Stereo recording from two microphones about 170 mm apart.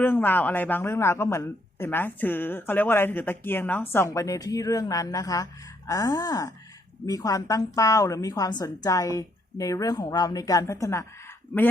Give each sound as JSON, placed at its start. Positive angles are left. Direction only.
{"t": 0.0, "sound": "a woman's voice", "side_deg": 10}